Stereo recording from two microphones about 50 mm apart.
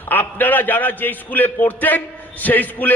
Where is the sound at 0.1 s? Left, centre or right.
Left.